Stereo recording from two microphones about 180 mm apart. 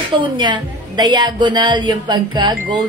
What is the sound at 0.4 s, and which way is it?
A woman's voice, 25° right (ahead or behind).